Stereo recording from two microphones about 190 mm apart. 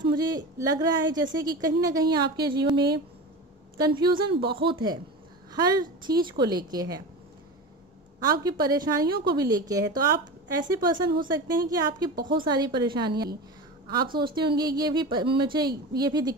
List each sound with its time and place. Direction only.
0.0 s a woman's voice: 20° right (ahead or behind)
8.3 s a woman's voice: 20° right (ahead or behind)
13.1 s a woman's voice: 55° right (ahead or behind)
14.1 s a woman's voice: 25° right (ahead or behind)